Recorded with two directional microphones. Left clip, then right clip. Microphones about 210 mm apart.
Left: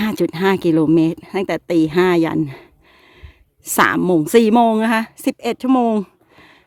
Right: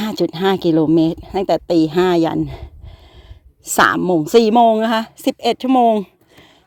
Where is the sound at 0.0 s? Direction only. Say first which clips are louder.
Even; 20° left (ahead or behind).